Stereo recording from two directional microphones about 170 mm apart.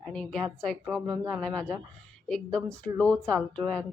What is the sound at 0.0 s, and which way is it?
A woman's voice, 5° left (ahead or behind).